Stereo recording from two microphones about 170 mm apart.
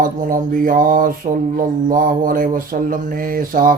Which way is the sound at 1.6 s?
55° right (ahead or behind).